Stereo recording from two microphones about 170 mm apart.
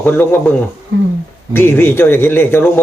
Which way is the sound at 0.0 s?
10° left (ahead or behind).